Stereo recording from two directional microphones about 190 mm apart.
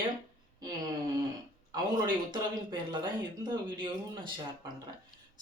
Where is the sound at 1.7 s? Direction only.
25° right (ahead or behind).